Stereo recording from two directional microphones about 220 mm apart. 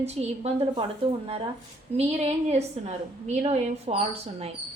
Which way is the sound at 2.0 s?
30° right (ahead or behind).